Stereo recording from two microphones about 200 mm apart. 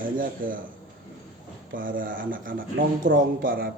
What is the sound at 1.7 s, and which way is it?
A man's voice, 45° right (ahead or behind).